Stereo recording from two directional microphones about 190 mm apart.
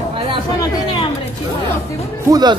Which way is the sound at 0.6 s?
20° left (ahead or behind).